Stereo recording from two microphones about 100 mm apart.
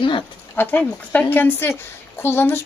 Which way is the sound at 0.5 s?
15° left (ahead or behind).